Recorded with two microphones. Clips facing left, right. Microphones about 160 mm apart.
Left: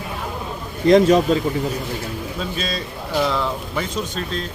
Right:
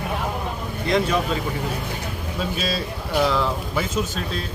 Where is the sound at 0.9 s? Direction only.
40° left (ahead or behind).